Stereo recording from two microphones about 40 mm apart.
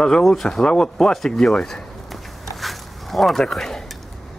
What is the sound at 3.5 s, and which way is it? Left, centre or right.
Speech, centre.